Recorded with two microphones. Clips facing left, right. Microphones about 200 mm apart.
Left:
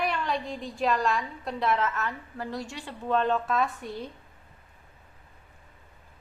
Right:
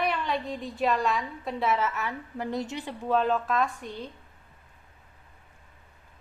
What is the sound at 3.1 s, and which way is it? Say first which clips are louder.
Speech: even; 5° right (ahead or behind).